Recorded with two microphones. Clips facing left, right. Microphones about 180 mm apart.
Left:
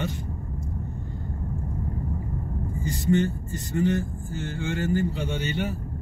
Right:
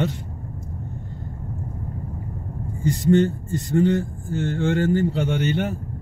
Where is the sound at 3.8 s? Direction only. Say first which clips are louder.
Right 4 dB; 60° right (ahead or behind).